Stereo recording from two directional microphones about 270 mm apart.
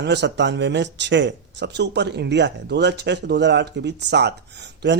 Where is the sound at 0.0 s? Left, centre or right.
Right.